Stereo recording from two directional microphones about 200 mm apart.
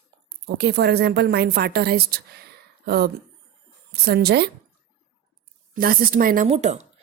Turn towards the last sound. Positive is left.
turn(degrees=-35)  # may be behind; listen again after turning